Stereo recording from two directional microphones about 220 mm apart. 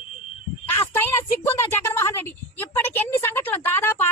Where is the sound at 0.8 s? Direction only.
10° left (ahead or behind).